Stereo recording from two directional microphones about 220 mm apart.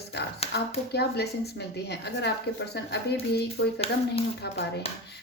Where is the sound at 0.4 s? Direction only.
25° left (ahead or behind).